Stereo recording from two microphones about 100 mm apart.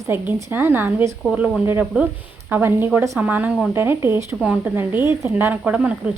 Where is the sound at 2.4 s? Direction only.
20° right (ahead or behind).